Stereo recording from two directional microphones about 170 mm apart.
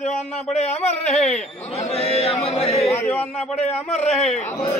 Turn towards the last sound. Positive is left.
turn(degrees=10)  # may be behind; listen again after turning